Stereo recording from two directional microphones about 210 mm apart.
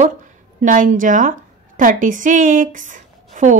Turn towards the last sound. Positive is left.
turn(degrees=-35)  # may be behind; listen again after turning